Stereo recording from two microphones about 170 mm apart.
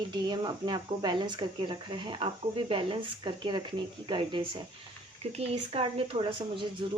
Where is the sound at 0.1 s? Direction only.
25° right (ahead or behind).